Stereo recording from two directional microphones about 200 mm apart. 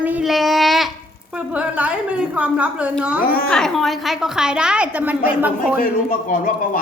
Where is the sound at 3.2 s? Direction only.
45° left (ahead or behind).